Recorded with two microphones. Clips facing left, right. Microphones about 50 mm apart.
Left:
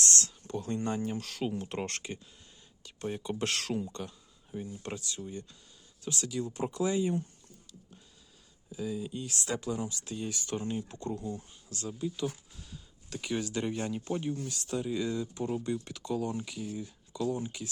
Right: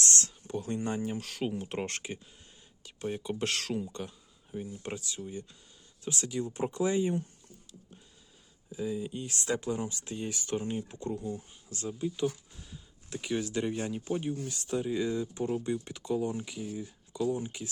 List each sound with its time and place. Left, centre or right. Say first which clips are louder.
0.2 s speech: even; centre
4.5 s speech: right 1 dB; centre
6.1 s speech: right 1 dB; right
8.7 s speech: right 2 dB; right
13.2 s speech: right 1 dB; centre
16.6 s speech: even; centre
17.1 s speech: right 2 dB; centre